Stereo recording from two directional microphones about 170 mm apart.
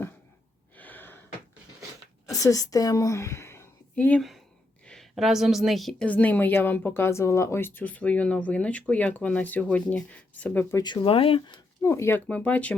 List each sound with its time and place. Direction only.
0.8 s gasp: 10° left (ahead or behind)
2.3 s a woman's voice: 20° left (ahead or behind)
10.8 s speech: 30° left (ahead or behind)
11.8 s a woman's voice: 15° left (ahead or behind)